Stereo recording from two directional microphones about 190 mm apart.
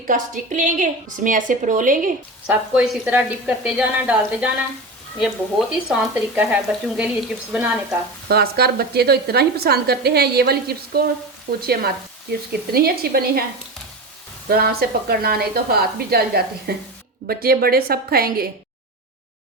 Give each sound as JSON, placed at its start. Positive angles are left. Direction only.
{"t": 0.1, "sound": "a woman's voice", "side_deg": -45}
{"t": 2.5, "sound": "a woman's voice", "side_deg": -5}
{"t": 8.3, "sound": "a woman's voice", "side_deg": -55}
{"t": 14.5, "sound": "a woman's voice", "side_deg": -55}